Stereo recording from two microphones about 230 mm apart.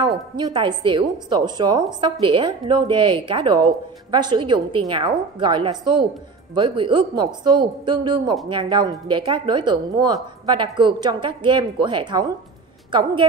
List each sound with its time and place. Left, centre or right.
0.4 s a woman's voice: right